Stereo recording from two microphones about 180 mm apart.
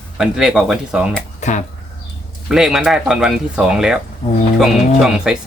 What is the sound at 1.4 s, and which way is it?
Speech, 40° left (ahead or behind).